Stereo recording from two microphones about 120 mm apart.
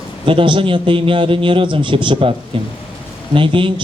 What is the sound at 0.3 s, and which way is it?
A man's voice, 45° right (ahead or behind).